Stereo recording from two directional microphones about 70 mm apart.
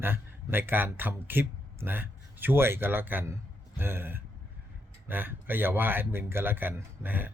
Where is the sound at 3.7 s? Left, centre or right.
Right.